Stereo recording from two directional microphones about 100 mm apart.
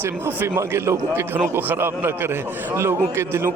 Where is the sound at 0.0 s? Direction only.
20° right (ahead or behind).